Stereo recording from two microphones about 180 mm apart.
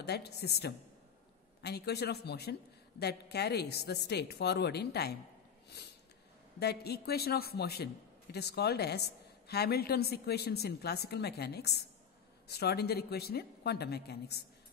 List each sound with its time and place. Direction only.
0.0 s a man's voice: 65° left (ahead or behind)
6.6 s a man's voice: 65° left (ahead or behind)